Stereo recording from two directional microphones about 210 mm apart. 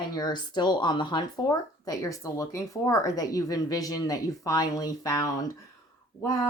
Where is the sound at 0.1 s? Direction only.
20° left (ahead or behind).